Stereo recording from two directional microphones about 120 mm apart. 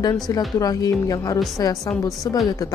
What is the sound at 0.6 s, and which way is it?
Speech, 30° left (ahead or behind).